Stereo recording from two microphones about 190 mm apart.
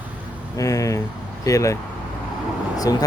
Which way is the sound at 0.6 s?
15° left (ahead or behind).